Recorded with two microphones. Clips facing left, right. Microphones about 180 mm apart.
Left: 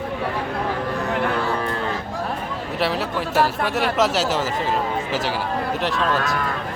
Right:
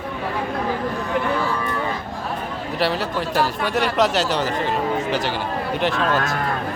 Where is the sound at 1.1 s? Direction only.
60° left (ahead or behind).